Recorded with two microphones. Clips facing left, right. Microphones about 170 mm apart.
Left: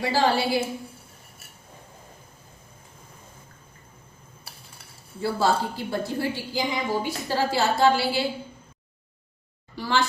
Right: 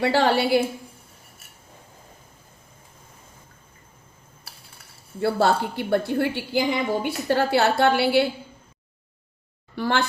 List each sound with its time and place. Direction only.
0.0 s a woman's voice: 65° right (ahead or behind)
5.2 s a woman's voice: 65° right (ahead or behind)
9.7 s a woman's voice: 60° right (ahead or behind)